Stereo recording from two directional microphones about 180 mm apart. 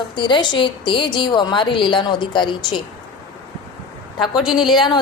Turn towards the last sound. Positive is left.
turn(degrees=25)  # may be behind; listen again after turning